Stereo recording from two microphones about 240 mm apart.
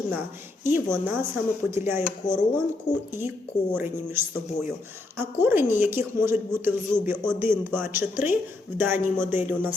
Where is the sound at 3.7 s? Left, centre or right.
Centre.